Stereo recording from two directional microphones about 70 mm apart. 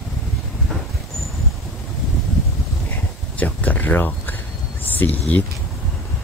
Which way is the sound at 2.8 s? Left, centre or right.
Left.